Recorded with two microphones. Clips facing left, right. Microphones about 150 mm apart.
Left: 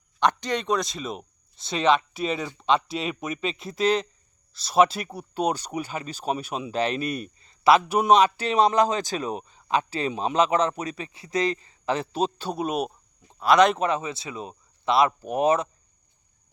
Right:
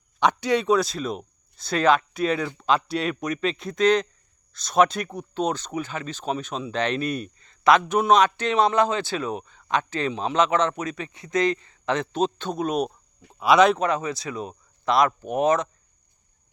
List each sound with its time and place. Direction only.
0.2 s speech: 10° right (ahead or behind); by 8.2 s 10° left (ahead or behind)
8.4 s a man's voice: 35° left (ahead or behind)
12.1 s speech: 10° left (ahead or behind)
13.4 s speech: 5° right (ahead or behind)
13.8 s speech: 30° left (ahead or behind)
15.2 s speech: 5° left (ahead or behind)
15.4 s a man's voice: 30° left (ahead or behind)